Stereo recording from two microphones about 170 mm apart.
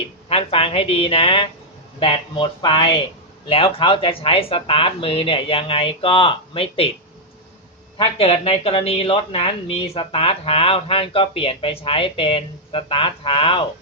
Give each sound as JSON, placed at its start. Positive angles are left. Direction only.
{"t": 0.3, "sound": "speech", "side_deg": 35}
{"t": 7.9, "sound": "speech", "side_deg": 35}